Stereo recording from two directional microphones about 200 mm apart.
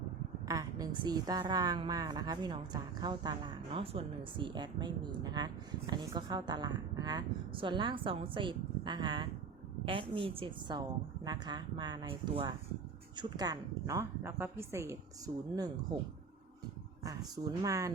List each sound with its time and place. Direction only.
0.4 s a woman's voice: 15° right (ahead or behind)
17.0 s a woman's voice: 20° right (ahead or behind)